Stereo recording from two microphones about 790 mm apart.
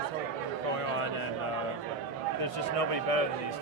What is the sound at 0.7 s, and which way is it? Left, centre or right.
Speech, right.